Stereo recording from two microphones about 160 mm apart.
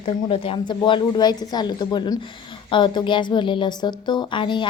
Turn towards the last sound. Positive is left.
turn(degrees=30)  # may be behind; listen again after turning